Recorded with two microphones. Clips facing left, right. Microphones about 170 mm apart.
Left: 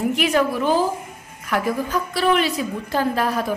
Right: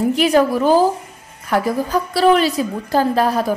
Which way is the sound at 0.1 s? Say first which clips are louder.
Right 5 dB; 35° right (ahead or behind).